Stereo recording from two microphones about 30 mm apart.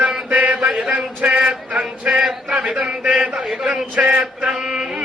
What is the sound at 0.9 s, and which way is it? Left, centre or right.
Speech, right.